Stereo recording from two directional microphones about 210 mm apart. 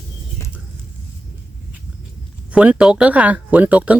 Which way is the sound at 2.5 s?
5° right (ahead or behind).